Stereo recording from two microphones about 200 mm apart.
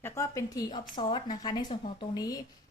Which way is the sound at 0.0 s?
15° left (ahead or behind).